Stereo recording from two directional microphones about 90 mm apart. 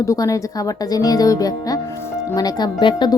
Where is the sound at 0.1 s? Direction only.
35° left (ahead or behind).